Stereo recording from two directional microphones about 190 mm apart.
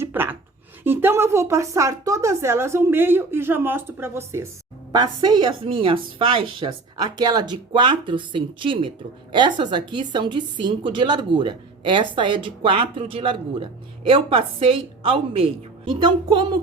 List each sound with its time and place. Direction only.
0.0 s a woman's voice: 10° right (ahead or behind)